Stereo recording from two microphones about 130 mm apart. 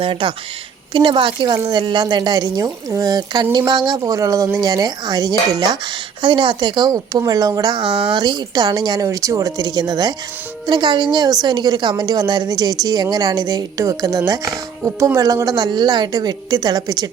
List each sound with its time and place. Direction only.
0.0 s a woman's voice: 40° right (ahead or behind)
7.9 s speech: 10° right (ahead or behind)
8.1 s a woman's voice: 35° right (ahead or behind)